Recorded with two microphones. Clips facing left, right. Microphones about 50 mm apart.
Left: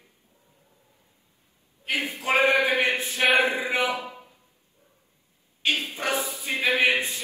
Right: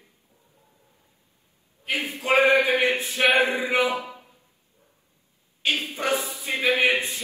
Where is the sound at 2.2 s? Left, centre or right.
Right.